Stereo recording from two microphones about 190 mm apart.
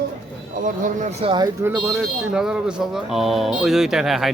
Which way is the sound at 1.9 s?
5° right (ahead or behind).